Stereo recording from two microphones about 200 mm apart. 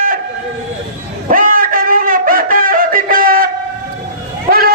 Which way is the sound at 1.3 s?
45° right (ahead or behind).